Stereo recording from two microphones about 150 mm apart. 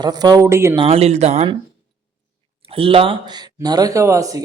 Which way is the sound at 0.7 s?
40° right (ahead or behind).